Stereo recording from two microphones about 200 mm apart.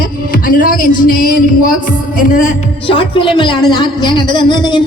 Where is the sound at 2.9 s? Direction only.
25° left (ahead or behind).